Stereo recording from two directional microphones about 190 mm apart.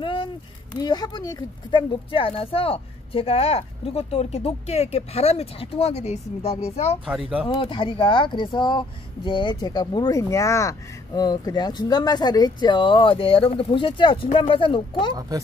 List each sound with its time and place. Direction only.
0.0 s a sound: 25° left (ahead or behind)
0.7 s a woman's voice: 20° left (ahead or behind)
7.1 s speech: 5° right (ahead or behind)
7.4 s speech: 25° left (ahead or behind)
15.1 s speech: 20° right (ahead or behind)